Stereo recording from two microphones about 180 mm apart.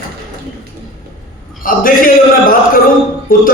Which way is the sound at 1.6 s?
50° left (ahead or behind).